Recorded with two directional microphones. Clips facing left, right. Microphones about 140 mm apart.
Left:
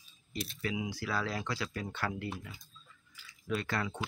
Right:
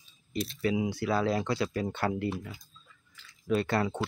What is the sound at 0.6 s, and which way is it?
Speech, 30° right (ahead or behind).